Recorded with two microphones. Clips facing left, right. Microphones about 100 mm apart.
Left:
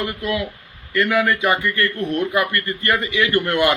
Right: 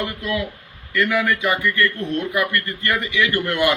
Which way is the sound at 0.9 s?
35° left (ahead or behind).